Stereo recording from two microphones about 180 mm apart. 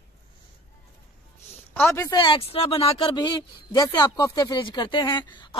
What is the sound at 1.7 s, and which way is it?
Speech, 10° left (ahead or behind).